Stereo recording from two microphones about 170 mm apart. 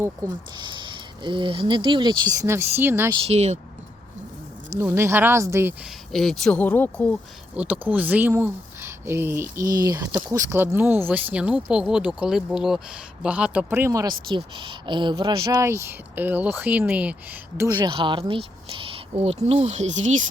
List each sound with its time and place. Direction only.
0.5 s speech: 25° right (ahead or behind)
3.2 s speech: 40° right (ahead or behind)
4.8 s speech: 15° right (ahead or behind)
5.8 s speech: centre (ahead or behind)
7.5 s speech: 10° right (ahead or behind)
17.6 s speech: 20° right (ahead or behind); by 20.0 s 40° right (ahead or behind)